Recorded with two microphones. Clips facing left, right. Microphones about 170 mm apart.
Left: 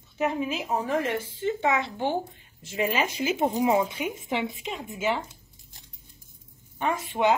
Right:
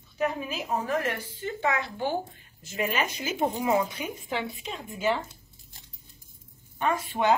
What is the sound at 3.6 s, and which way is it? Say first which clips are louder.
A woman's voice: left 3 dB; 15° left (ahead or behind).